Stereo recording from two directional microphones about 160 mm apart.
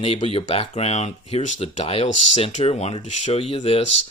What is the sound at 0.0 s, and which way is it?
Speech, 40° left (ahead or behind).